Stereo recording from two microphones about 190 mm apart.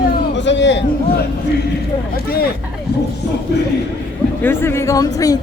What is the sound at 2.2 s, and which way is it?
Speech, 55° left (ahead or behind).